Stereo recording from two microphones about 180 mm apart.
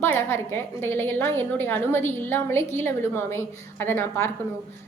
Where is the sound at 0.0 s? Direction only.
15° left (ahead or behind).